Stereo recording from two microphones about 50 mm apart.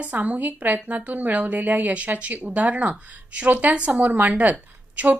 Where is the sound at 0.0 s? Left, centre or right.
Right.